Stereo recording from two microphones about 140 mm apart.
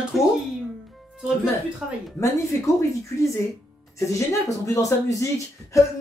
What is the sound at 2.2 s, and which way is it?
Speech, 20° left (ahead or behind).